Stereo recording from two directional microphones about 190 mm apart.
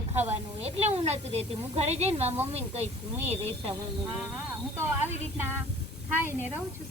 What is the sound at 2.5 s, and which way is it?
Speech, 35° right (ahead or behind).